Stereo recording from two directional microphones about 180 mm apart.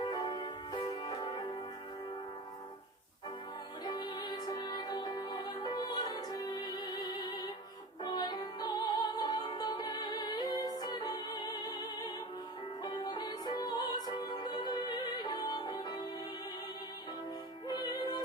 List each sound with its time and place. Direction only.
0.0 s music: 25° left (ahead or behind)
3.8 s music: 25° left (ahead or behind)
17.7 s music: 20° left (ahead or behind)